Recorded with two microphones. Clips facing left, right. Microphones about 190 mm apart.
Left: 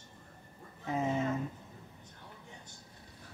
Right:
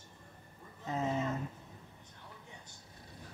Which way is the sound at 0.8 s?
10° left (ahead or behind).